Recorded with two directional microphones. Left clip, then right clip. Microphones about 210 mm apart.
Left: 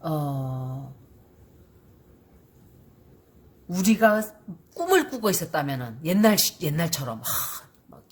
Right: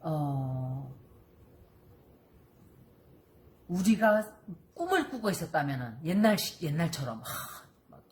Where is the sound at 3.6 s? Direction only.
50° left (ahead or behind).